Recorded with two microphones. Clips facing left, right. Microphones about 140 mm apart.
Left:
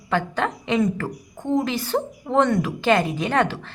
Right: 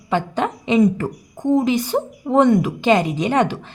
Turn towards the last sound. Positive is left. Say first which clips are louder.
# right 3 dB
turn(degrees=-15)  # may be behind; listen again after turning